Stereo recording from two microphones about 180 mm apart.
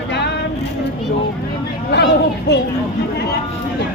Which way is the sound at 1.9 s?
65° left (ahead or behind).